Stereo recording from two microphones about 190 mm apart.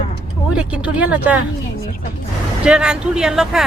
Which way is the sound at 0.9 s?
5° right (ahead or behind).